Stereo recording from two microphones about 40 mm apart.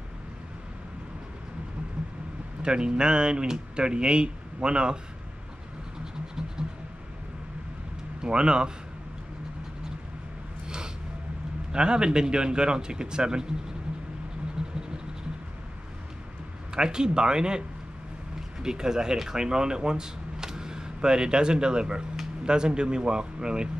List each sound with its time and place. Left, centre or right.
2.6 s speech: right
8.2 s speech: right
11.7 s speech: right
14.6 s a sound: right
16.7 s speech: centre